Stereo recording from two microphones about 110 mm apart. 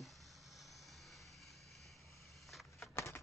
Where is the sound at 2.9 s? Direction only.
25° left (ahead or behind).